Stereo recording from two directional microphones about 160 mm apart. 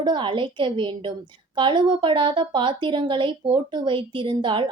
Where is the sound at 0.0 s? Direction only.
30° right (ahead or behind).